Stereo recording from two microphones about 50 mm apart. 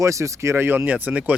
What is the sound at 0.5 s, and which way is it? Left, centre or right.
Speech, right.